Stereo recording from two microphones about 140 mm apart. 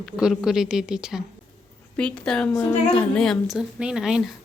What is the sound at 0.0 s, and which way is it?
Speech, 5° right (ahead or behind).